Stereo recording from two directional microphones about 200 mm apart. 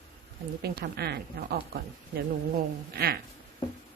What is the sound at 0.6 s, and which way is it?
A woman's voice, 50° right (ahead or behind).